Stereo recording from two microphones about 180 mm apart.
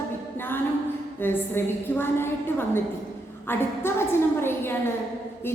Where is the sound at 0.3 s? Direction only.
10° left (ahead or behind).